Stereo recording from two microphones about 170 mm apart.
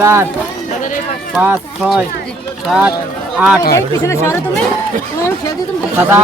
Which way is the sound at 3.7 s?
15° left (ahead or behind).